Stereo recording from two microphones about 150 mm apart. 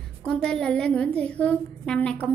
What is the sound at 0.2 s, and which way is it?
A woman's voice, 5° left (ahead or behind).